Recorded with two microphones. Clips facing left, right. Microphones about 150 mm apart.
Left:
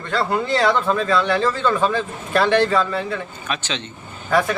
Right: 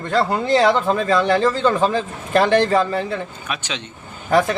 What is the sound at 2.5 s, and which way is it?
Speech, 40° right (ahead or behind).